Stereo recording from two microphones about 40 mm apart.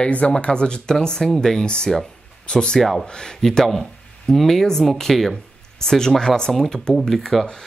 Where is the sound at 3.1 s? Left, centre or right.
Centre.